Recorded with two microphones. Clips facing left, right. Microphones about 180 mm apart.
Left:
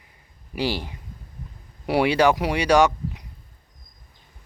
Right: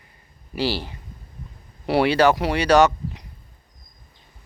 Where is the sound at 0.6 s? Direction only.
15° left (ahead or behind).